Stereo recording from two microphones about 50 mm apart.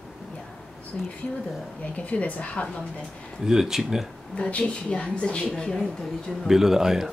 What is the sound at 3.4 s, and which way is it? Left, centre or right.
Speech, centre.